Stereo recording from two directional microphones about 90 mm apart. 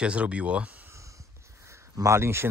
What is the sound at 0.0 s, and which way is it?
Speech, 15° right (ahead or behind).